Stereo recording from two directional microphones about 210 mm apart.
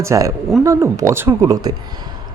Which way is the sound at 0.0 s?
15° right (ahead or behind).